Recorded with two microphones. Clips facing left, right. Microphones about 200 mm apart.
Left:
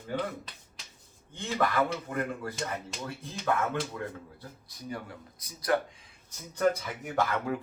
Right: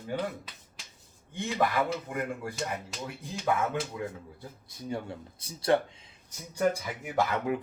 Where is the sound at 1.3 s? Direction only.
10° right (ahead or behind).